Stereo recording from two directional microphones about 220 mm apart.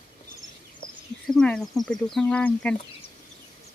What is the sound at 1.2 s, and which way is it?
Speech, 5° left (ahead or behind).